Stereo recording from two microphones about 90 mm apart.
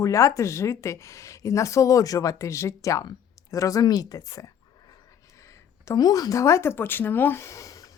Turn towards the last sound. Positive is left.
turn(degrees=40)  # may be behind; listen again after turning